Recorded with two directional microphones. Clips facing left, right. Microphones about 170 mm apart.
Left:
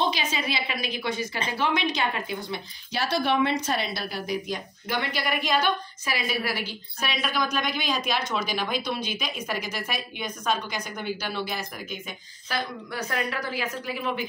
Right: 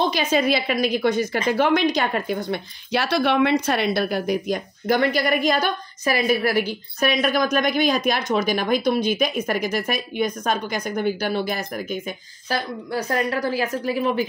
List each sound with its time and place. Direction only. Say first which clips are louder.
0.1 s a woman's voice: right 9 dB; 50° right (ahead or behind)
2.9 s a woman's voice: right 5 dB; 70° right (ahead or behind); by 14.2 s 40° right (ahead or behind)